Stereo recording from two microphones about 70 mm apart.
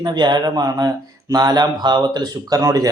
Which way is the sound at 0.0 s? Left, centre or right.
Right.